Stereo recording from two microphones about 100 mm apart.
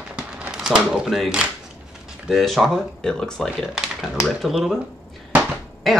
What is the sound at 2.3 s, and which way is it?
Speech, centre (ahead or behind).